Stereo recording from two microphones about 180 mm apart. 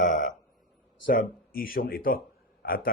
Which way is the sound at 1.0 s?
50° left (ahead or behind).